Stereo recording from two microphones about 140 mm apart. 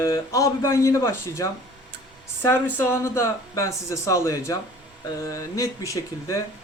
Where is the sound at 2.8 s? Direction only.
20° left (ahead or behind).